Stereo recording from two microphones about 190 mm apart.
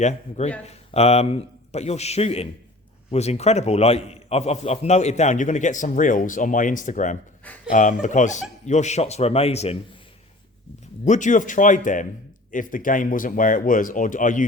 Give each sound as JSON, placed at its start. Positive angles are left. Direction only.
{"t": 0.0, "sound": "a man's voice", "side_deg": 35}
{"t": 11.0, "sound": "speech", "side_deg": 40}